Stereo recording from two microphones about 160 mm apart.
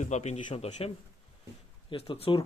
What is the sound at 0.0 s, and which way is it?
A man's voice, 45° left (ahead or behind).